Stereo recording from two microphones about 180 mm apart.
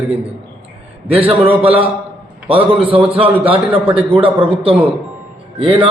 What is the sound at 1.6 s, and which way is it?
A man's voice, 30° right (ahead or behind).